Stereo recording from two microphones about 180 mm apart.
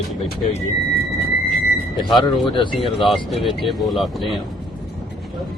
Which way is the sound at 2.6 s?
25° left (ahead or behind).